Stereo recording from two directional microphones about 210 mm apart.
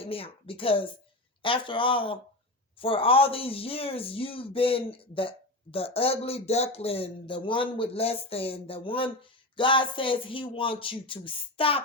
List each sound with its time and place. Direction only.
0.0 s speech: 25° left (ahead or behind)